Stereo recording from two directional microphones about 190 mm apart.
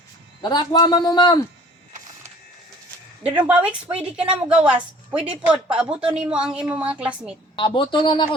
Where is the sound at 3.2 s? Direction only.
10° right (ahead or behind).